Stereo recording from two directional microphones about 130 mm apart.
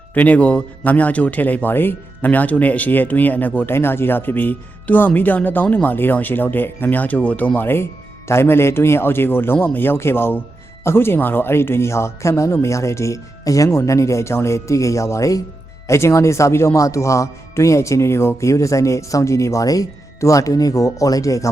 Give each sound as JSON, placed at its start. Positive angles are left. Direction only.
{"t": 0.1, "sound": "a man's voice", "side_deg": 10}